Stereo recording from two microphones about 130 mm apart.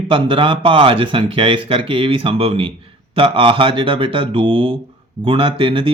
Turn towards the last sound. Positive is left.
turn(degrees=-45)  # may be behind; listen again after turning